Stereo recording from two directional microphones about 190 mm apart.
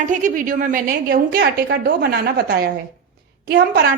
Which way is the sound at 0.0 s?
40° right (ahead or behind).